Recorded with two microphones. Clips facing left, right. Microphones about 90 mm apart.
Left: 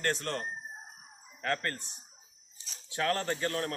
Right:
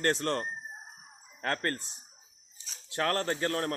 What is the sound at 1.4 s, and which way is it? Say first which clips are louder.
Speech: right 1 dB; 40° right (ahead or behind).